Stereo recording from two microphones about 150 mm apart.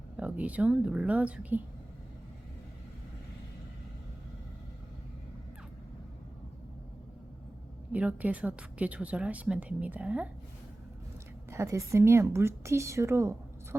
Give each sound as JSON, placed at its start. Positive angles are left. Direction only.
{"t": 0.2, "sound": "a woman's voice", "side_deg": -10}
{"t": 7.9, "sound": "a woman's voice", "side_deg": -10}
{"t": 11.5, "sound": "a woman's voice", "side_deg": -20}